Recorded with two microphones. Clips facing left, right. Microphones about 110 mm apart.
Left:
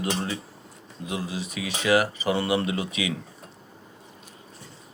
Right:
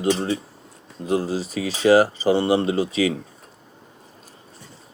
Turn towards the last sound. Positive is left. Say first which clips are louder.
# right 8 dB
turn(degrees=-35)  # may be behind; listen again after turning